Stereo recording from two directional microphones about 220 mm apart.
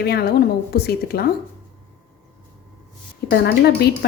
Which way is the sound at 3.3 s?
50° left (ahead or behind).